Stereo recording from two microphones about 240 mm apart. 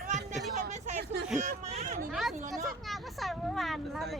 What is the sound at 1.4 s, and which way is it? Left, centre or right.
Speech, right.